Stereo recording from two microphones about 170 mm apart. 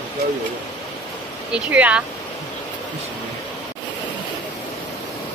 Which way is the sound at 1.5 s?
10° right (ahead or behind).